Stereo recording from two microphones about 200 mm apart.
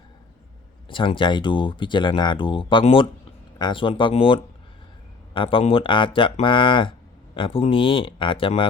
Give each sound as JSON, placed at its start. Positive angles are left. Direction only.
{"t": 0.9, "sound": "speech", "side_deg": 25}